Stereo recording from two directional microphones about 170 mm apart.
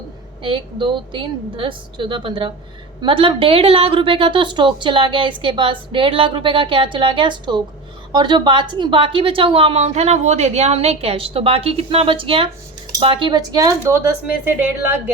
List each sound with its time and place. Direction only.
0.4 s a woman's voice: 30° right (ahead or behind); by 15.1 s 10° right (ahead or behind)